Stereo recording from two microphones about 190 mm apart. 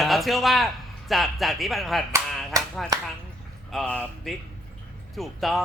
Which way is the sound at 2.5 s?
20° right (ahead or behind).